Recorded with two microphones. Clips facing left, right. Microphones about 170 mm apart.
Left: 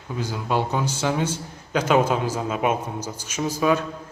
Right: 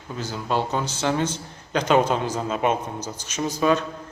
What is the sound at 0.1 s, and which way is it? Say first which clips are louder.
Speech: left 1 dB; 10° left (ahead or behind).